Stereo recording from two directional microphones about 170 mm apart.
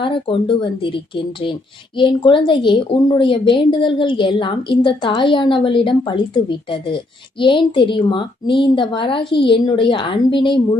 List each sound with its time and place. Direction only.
0.0 s a woman's voice: 30° left (ahead or behind)